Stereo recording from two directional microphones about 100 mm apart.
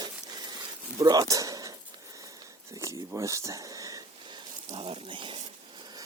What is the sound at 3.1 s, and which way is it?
Speech, 30° right (ahead or behind).